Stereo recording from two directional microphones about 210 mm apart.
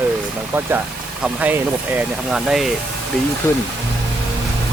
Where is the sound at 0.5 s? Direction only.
10° right (ahead or behind).